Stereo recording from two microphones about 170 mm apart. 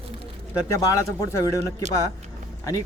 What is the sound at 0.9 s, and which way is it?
Speech, 20° left (ahead or behind).